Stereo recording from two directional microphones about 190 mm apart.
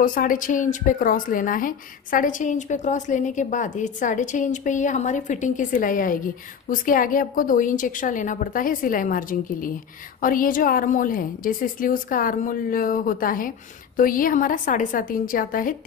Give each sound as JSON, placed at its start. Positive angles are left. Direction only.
{"t": 0.0, "sound": "a woman's voice", "side_deg": 45}